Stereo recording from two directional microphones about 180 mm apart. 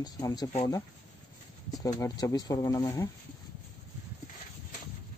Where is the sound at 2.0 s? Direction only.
20° left (ahead or behind).